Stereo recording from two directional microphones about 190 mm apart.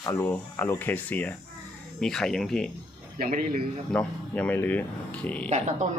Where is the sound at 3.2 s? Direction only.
50° right (ahead or behind).